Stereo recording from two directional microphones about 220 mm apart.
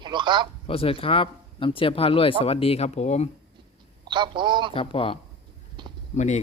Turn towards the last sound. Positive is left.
turn(degrees=35)  # may be behind; listen again after turning